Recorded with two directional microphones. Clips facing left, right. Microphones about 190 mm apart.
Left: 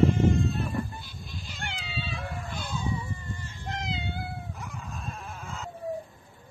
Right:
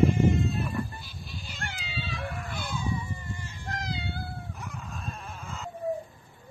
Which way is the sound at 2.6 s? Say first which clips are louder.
Even; 10° right (ahead or behind).